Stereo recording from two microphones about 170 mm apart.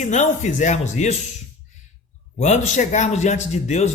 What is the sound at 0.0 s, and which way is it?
A man's voice, 45° left (ahead or behind).